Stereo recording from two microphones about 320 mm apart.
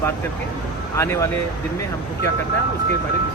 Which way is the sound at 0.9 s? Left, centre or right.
Centre.